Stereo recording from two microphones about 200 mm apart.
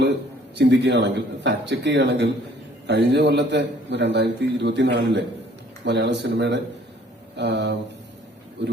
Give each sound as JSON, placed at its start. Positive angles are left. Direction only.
{"t": 0.5, "sound": "a man's voice", "side_deg": -60}